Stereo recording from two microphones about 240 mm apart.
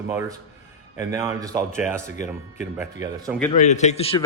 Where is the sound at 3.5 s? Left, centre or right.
Left.